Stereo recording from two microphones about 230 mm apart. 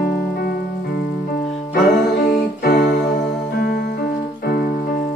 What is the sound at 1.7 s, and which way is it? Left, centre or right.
Music, left.